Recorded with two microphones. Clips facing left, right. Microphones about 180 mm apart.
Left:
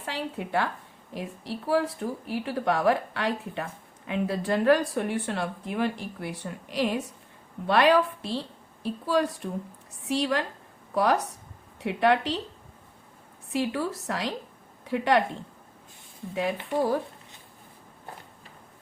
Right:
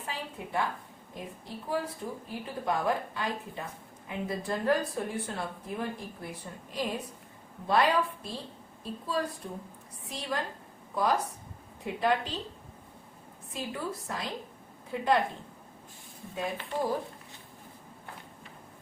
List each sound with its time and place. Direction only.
0.0 s a woman's voice: 80° left
13.5 s a woman's voice: 75° left (ahead or behind)
16.3 s speech: 75° left (ahead or behind)